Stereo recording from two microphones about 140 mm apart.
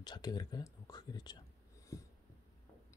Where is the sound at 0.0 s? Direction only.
30° left (ahead or behind).